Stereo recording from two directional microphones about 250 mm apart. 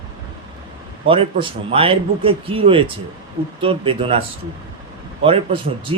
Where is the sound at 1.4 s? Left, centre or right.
Right.